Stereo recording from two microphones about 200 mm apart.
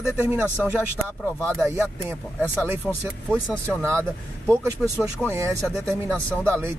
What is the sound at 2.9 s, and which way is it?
Speech, 5° right (ahead or behind).